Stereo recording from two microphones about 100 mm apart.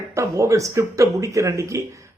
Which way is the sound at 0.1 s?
30° right (ahead or behind).